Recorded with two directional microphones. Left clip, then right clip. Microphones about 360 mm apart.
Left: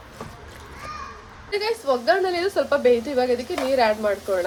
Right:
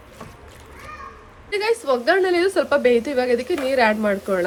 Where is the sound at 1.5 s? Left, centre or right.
Right.